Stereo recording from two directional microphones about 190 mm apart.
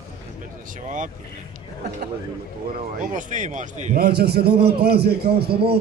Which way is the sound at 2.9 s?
40° right (ahead or behind).